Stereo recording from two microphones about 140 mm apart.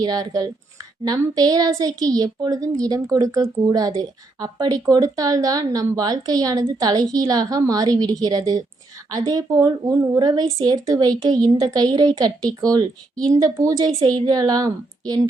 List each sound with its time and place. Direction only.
0.0 s a woman's voice: 30° right (ahead or behind)